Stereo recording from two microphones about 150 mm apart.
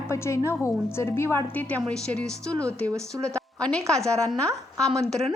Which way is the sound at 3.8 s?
20° right (ahead or behind).